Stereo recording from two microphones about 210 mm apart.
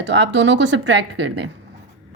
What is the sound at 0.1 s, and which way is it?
Speech, 60° right (ahead or behind).